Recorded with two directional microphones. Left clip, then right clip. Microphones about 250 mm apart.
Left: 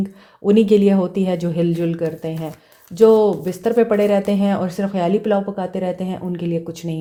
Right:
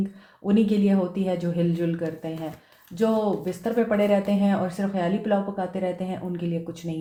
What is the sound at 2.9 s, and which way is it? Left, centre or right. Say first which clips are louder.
Speech: left 11 dB; left.